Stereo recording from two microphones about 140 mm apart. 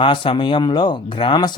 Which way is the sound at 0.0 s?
40° left (ahead or behind).